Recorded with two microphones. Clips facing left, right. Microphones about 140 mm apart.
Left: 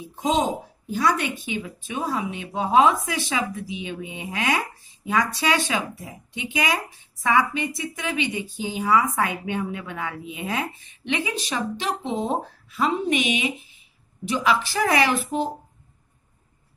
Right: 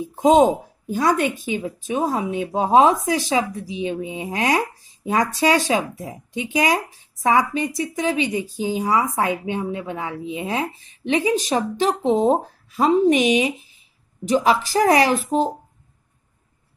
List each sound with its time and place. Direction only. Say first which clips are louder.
0.0 s a woman's voice: right 9 dB; 50° right (ahead or behind)